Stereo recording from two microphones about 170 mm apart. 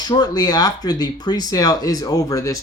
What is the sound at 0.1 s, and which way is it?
Speech, 25° left (ahead or behind).